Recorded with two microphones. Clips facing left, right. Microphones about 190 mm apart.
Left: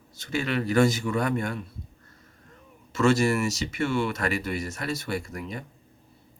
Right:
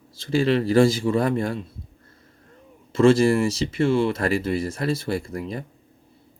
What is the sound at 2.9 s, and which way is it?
Speech, 30° right (ahead or behind).